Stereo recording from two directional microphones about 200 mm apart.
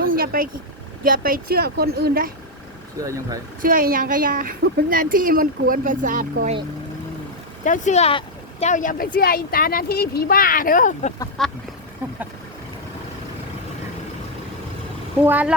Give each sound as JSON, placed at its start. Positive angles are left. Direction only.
{"t": 0.0, "sound": "vehicle", "side_deg": -45}
{"t": 1.0, "sound": "speech", "side_deg": -45}
{"t": 3.0, "sound": "speech", "side_deg": -15}
{"t": 3.6, "sound": "speech", "side_deg": -45}
{"t": 7.6, "sound": "speech", "side_deg": 40}
{"t": 11.4, "sound": "duck", "side_deg": 0}
{"t": 15.2, "sound": "speech", "side_deg": -10}